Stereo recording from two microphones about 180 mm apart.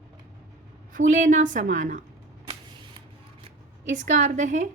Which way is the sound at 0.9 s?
45° right (ahead or behind).